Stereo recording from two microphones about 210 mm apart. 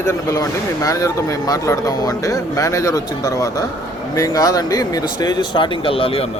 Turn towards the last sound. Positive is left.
turn(degrees=25)  # may be behind; listen again after turning